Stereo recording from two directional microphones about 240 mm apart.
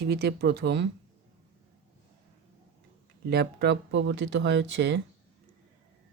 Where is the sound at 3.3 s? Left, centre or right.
Right.